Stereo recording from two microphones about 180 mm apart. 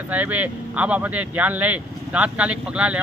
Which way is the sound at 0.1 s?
10° right (ahead or behind).